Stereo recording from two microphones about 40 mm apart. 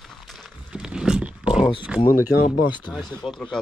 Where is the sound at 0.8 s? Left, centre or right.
Centre.